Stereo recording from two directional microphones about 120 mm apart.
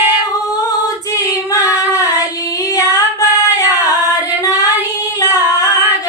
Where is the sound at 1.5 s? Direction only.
25° left (ahead or behind).